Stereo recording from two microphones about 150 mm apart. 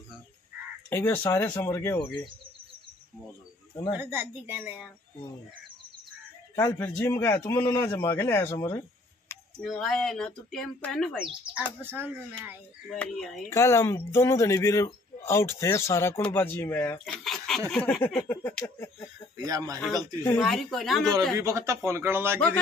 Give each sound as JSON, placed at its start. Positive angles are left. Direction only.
{"t": 0.8, "sound": "a man's voice", "side_deg": 15}
{"t": 4.0, "sound": "speech", "side_deg": -15}
{"t": 6.5, "sound": "a man's voice", "side_deg": 15}
{"t": 9.6, "sound": "speech", "side_deg": 5}
{"t": 11.1, "sound": "speech", "side_deg": -5}
{"t": 12.9, "sound": "speech", "side_deg": 5}
{"t": 13.5, "sound": "a man's voice", "side_deg": 20}
{"t": 17.0, "sound": "speech", "side_deg": 0}
{"t": 19.3, "sound": "speech", "side_deg": -25}
{"t": 20.3, "sound": "speech", "side_deg": 0}
{"t": 21.4, "sound": "speech", "side_deg": -20}